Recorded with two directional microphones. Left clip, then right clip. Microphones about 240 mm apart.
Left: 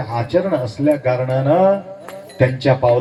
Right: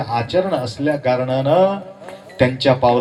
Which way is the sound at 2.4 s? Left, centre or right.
Right.